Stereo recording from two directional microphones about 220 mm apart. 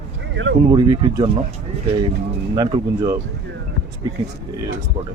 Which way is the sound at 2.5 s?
20° right (ahead or behind).